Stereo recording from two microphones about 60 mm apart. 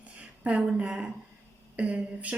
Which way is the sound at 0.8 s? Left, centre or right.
Centre.